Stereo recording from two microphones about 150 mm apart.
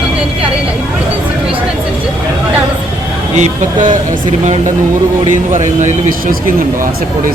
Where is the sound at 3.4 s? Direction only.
60° right (ahead or behind).